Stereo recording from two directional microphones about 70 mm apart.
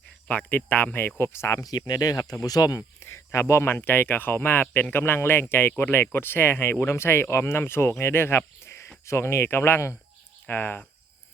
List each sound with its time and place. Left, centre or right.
0.3 s speech: left
1.2 s speech: left
1.9 s speech: left
2.7 s a sound: left
3.5 s speech: left